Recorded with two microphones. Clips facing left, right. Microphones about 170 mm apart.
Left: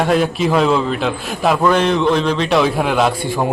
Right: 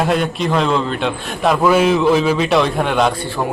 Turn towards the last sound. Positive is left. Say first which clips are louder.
# left 2 dB
turn(degrees=15)  # may be behind; listen again after turning